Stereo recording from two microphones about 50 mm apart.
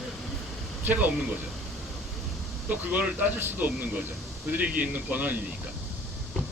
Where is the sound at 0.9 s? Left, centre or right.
Right.